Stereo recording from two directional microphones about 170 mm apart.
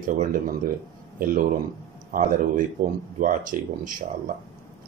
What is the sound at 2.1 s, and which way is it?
Speech, 50° right (ahead or behind).